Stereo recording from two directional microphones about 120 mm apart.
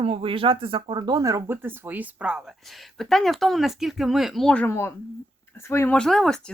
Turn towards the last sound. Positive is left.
turn(degrees=5)  # may be behind; listen again after turning